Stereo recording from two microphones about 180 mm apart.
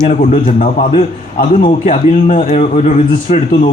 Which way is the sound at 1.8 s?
45° left (ahead or behind).